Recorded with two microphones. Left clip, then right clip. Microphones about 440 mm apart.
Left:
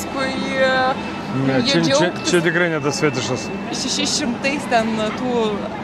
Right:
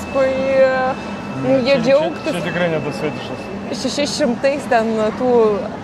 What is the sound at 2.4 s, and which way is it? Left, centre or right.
Speech, left.